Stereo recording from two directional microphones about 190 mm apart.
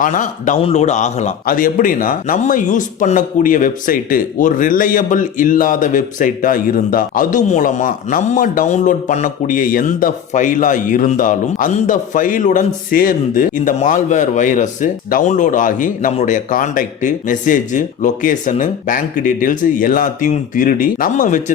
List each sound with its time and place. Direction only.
0.0 s a man's voice: 40° left (ahead or behind)